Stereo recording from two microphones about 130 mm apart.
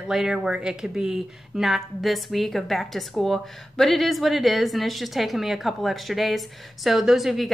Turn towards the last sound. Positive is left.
turn(degrees=-5)  # may be behind; listen again after turning